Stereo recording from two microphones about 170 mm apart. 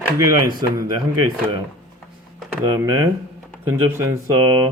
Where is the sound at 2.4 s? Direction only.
5° right (ahead or behind).